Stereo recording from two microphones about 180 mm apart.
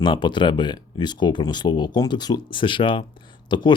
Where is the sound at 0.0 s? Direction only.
25° left (ahead or behind).